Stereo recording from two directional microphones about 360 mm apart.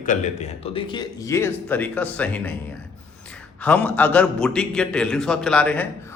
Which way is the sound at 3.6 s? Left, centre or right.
Centre.